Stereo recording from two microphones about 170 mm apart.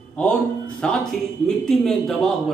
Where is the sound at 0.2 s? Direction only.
5° left (ahead or behind).